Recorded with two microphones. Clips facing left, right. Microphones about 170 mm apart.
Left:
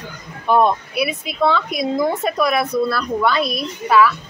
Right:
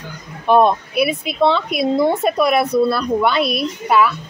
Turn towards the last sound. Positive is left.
turn(degrees=-25)  # may be behind; listen again after turning